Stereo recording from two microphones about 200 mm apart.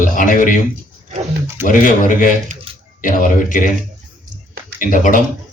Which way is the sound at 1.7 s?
40° left (ahead or behind).